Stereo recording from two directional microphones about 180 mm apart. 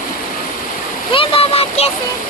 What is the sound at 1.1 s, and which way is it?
Speech, 30° left (ahead or behind).